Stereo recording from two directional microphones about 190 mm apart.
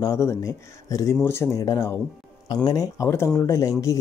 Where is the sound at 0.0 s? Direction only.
15° left (ahead or behind).